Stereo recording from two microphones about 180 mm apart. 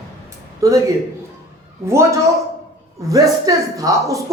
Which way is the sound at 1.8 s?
15° right (ahead or behind).